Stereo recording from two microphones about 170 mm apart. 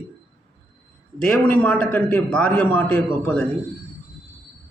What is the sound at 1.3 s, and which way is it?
A man's voice, 10° left (ahead or behind).